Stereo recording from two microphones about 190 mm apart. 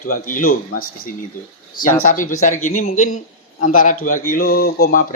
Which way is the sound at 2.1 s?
40° left (ahead or behind).